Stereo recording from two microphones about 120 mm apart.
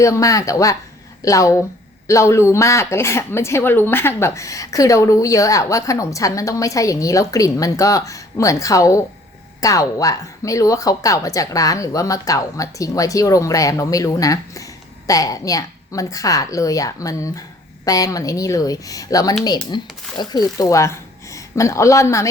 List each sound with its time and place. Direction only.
0.0 s speech: 25° left (ahead or behind)